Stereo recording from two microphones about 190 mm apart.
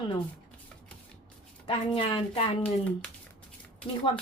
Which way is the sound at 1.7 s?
30° left (ahead or behind).